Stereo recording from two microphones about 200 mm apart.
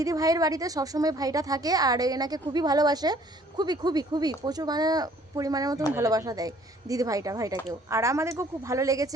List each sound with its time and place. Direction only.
0.0 s a woman's voice: 15° right (ahead or behind)